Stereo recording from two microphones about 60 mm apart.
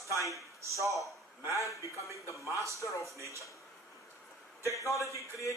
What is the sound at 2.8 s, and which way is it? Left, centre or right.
Speech, left.